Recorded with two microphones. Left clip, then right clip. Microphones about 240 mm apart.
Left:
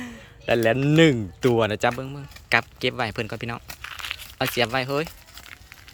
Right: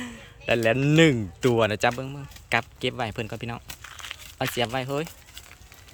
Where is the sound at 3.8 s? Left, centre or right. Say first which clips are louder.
Left 6 dB; centre.